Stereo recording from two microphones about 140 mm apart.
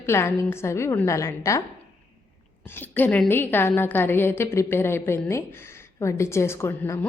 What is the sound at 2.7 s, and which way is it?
A woman's voice, 15° left (ahead or behind).